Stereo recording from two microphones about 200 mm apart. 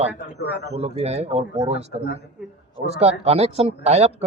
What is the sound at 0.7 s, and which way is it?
Speech, 30° right (ahead or behind).